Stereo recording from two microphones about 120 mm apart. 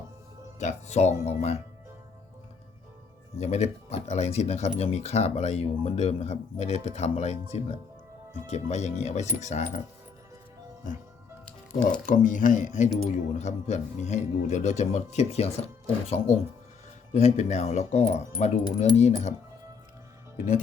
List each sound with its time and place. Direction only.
0.6 s speech: 65° left (ahead or behind)
3.3 s speech: 65° left (ahead or behind)
9.4 s speech: 85° left
11.9 s speech: 90° left
13.4 s speech: 70° left (ahead or behind)
17.2 s speech: 75° left (ahead or behind)